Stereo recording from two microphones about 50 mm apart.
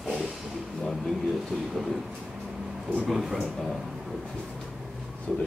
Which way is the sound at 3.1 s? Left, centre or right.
Centre.